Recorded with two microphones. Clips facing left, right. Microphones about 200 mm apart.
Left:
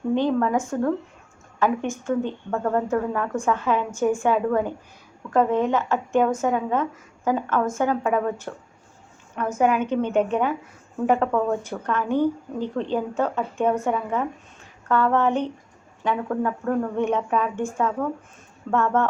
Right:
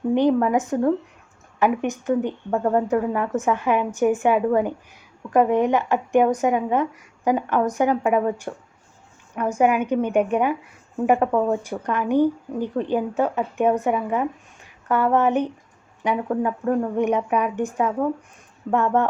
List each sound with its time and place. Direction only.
0.1 s speech: 15° right (ahead or behind)
9.6 s speech: 10° right (ahead or behind)